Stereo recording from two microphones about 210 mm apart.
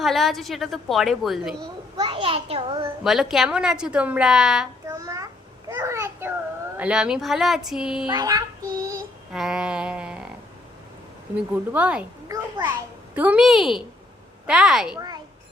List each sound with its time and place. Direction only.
0.0 s a woman's voice: centre (ahead or behind)
1.5 s a child's voice: 20° right (ahead or behind)
3.0 s a woman's voice: centre (ahead or behind)
4.9 s a sound: 15° right (ahead or behind)
6.7 s a woman's voice: 5° right (ahead or behind)
8.1 s child singing: 20° right (ahead or behind)
9.3 s a woman's voice: 5° right (ahead or behind)
11.3 s a woman's voice: 5° right (ahead or behind)